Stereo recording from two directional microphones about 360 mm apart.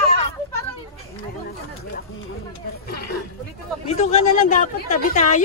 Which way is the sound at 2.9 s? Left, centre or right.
Left.